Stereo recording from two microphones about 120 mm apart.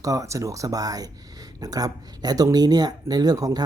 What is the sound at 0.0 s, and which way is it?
Speech, 30° right (ahead or behind).